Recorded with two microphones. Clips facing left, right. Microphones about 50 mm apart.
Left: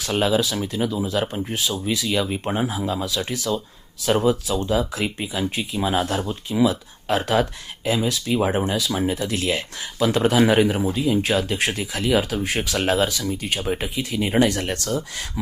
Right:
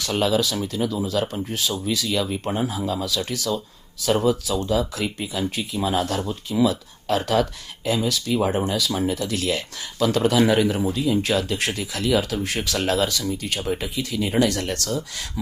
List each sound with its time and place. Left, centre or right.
0.0 s speech: left
4.7 s speech: left
6.5 s speech: centre
7.1 s speech: left